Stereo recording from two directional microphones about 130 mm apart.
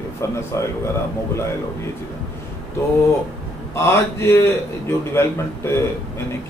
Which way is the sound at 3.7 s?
20° left (ahead or behind).